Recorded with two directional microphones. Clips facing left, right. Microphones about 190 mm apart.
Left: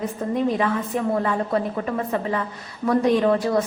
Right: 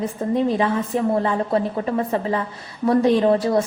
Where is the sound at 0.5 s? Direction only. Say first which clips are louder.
Right 2 dB; 30° right (ahead or behind).